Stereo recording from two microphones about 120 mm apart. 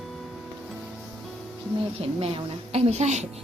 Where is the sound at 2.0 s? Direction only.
50° right (ahead or behind); by 3.2 s 70° right (ahead or behind).